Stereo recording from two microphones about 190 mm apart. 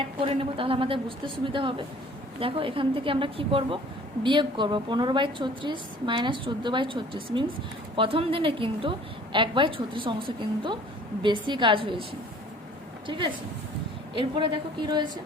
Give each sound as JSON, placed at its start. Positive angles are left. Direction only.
{"t": 0.2, "sound": "a woman's voice", "side_deg": -30}
{"t": 13.1, "sound": "a woman's voice", "side_deg": -25}